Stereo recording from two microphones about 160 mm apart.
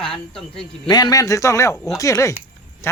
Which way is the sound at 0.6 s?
25° left (ahead or behind).